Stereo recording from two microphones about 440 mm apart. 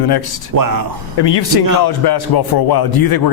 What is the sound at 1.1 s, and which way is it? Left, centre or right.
Speech, left.